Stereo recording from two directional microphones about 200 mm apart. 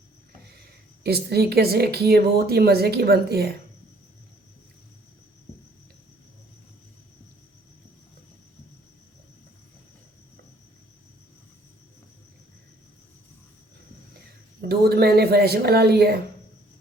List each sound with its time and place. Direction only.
0.4 s speech: 55° right (ahead or behind)
14.7 s a woman's voice: 50° right (ahead or behind)